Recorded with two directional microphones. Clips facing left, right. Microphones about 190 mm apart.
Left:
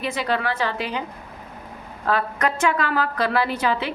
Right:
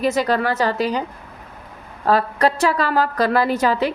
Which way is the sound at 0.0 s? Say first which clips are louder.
Right 6 dB; 40° right (ahead or behind).